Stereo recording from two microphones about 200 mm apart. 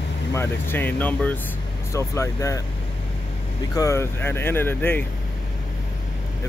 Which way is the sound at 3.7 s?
15° left (ahead or behind).